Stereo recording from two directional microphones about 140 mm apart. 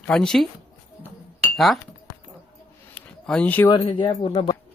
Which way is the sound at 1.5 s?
Centre (ahead or behind).